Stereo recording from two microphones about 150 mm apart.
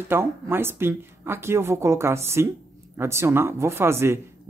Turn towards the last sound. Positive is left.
turn(degrees=-15)  # may be behind; listen again after turning